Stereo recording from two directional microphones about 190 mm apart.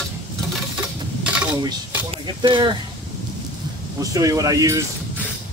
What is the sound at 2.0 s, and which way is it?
Speech, 25° right (ahead or behind).